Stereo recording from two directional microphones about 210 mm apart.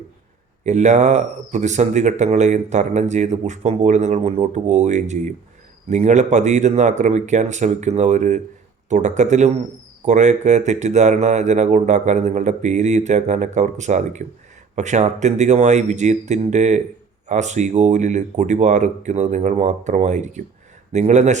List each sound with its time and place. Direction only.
0.6 s speech: 35° right (ahead or behind)